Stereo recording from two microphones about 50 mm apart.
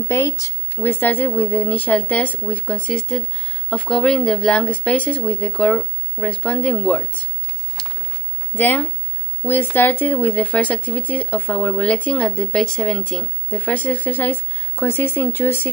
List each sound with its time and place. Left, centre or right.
0.1 s speech: left
0.7 s speech: left
2.9 s speech: centre
5.5 s speech: centre
8.5 s speech: left
12.6 s speech: centre
13.5 s speech: left